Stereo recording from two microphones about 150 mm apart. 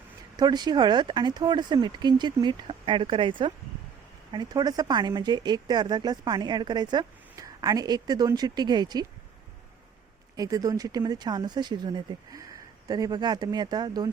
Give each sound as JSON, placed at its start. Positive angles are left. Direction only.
{"t": 0.3, "sound": "a woman's voice", "side_deg": -25}
{"t": 10.3, "sound": "a woman's voice", "side_deg": -25}